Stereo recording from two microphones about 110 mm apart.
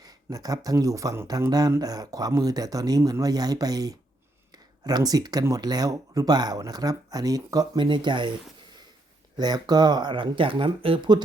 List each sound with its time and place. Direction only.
0.0 s speech: 35° right (ahead or behind)
7.9 s speech: 45° right (ahead or behind)
9.4 s speech: 40° right (ahead or behind)